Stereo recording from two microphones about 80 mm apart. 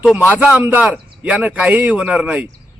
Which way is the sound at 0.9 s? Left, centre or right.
Centre.